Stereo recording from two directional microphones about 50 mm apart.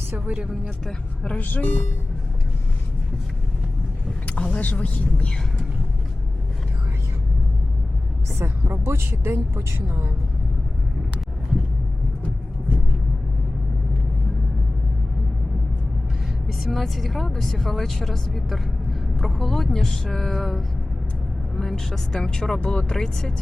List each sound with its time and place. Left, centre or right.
0.1 s a sound: right
0.9 s speech: centre
1.4 s speech: left
4.3 s vehicle: left
4.6 s speech: left
8.4 s a woman's voice: right
16.5 s a woman's voice: centre